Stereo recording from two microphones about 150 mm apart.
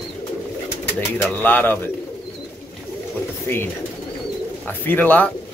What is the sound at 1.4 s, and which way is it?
Speech, 10° left (ahead or behind).